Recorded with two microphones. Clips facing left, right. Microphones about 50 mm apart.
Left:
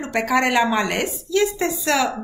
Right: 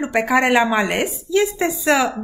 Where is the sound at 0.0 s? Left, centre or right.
Centre.